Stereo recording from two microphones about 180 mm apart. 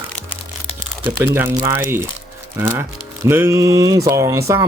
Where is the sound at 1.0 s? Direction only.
10° right (ahead or behind).